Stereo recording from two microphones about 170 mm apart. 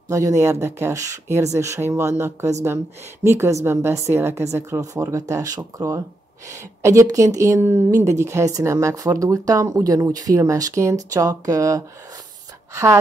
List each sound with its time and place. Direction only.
0.1 s a woman's voice: 20° right (ahead or behind)